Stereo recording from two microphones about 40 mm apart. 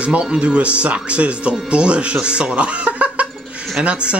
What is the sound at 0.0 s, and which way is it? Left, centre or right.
Speech, right.